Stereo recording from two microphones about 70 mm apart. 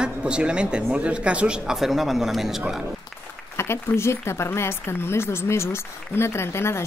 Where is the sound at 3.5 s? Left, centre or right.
Left.